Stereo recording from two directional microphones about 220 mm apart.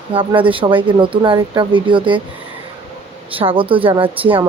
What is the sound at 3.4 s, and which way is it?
Speech, 25° right (ahead or behind).